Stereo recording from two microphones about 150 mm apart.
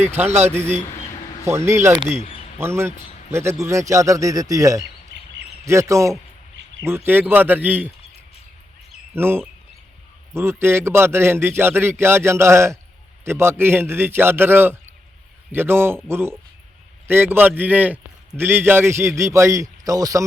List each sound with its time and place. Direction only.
0.0 s a man's voice: 15° right (ahead or behind)
9.1 s a man's voice: 15° right (ahead or behind)